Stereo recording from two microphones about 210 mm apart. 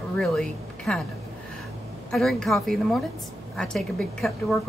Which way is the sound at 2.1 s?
Centre (ahead or behind).